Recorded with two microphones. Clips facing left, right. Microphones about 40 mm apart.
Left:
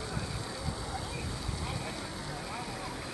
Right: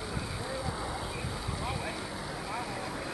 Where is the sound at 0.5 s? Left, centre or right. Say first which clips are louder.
Right 3 dB; centre.